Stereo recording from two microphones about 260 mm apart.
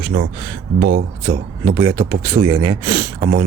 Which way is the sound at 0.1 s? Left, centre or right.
Right.